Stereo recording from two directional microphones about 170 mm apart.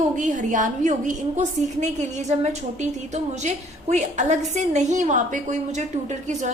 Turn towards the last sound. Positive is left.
turn(degrees=-45)  # may be behind; listen again after turning